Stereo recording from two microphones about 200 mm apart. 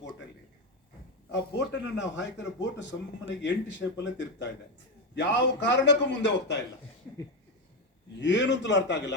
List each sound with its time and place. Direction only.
1.3 s a man's voice: 60° left (ahead or behind)
8.2 s a man's voice: 65° left (ahead or behind)